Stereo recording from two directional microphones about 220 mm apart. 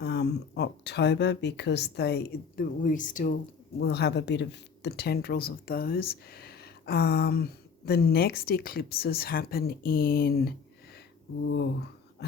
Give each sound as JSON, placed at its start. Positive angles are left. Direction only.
{"t": 0.0, "sound": "speech", "side_deg": 50}
{"t": 3.8, "sound": "speech", "side_deg": 50}